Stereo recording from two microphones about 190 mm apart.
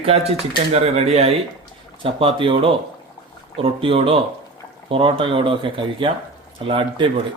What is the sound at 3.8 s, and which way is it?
Speech, 30° right (ahead or behind).